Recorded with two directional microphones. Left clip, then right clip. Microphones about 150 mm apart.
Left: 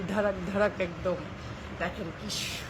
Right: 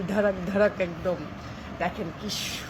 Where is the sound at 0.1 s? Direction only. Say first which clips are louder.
Right 4 dB; 15° right (ahead or behind).